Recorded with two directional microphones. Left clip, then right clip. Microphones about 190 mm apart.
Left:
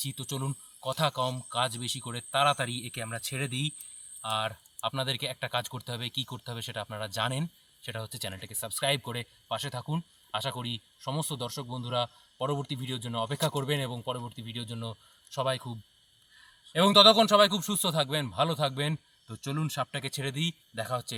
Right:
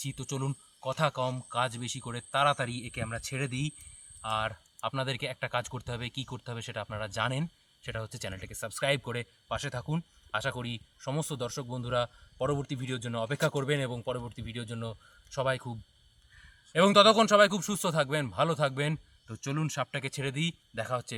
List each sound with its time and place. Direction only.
0.0 s speech: 10° right (ahead or behind)